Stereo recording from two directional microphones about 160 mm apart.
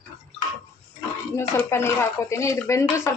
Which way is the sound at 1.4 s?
15° left (ahead or behind).